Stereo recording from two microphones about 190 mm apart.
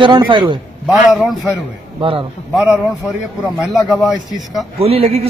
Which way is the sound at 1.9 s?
30° right (ahead or behind).